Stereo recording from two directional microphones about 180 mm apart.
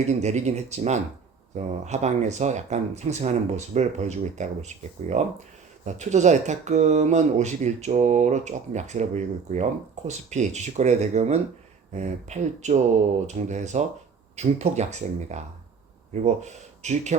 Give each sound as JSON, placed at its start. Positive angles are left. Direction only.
{"t": 0.1, "sound": "speech", "side_deg": -40}